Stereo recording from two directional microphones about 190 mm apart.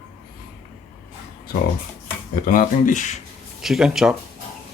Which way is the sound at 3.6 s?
Centre (ahead or behind).